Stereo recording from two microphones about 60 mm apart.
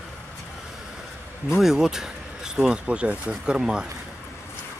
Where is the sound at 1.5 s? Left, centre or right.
Centre.